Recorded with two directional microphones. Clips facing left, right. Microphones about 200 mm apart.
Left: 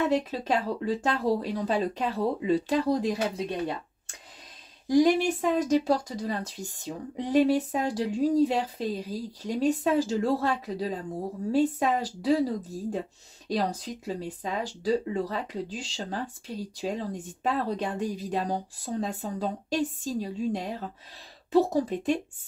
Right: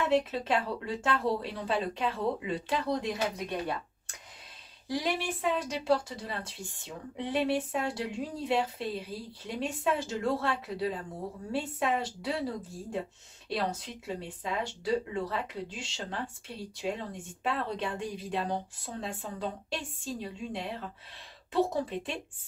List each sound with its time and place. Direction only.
0.1 s speech: 40° left (ahead or behind)
4.8 s speech: 45° left (ahead or behind)